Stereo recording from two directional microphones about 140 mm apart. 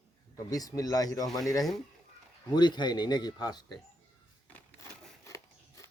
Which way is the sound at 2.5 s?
30° left (ahead or behind).